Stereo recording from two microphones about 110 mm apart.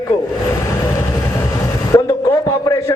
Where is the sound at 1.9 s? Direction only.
30° left (ahead or behind).